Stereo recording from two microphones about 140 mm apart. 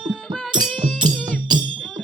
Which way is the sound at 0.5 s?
35° right (ahead or behind).